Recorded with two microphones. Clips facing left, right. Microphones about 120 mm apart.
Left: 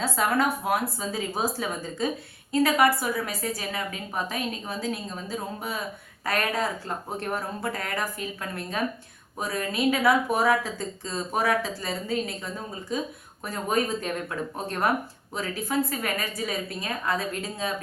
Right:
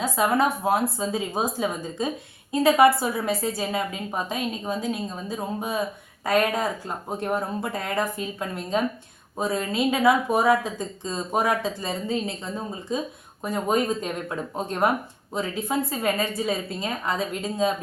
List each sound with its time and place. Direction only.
0.0 s a woman's voice: 20° right (ahead or behind)